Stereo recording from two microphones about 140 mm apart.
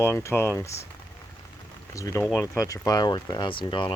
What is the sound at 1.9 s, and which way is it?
Speech, 20° left (ahead or behind).